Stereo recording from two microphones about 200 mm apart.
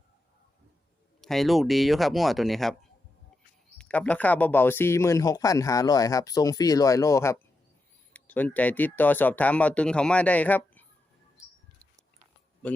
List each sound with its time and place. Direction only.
1.2 s speech: centre (ahead or behind)
3.8 s speech: 5° left (ahead or behind)